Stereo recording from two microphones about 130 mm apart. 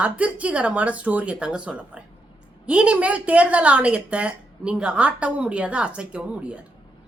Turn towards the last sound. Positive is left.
turn(degrees=-10)  # may be behind; listen again after turning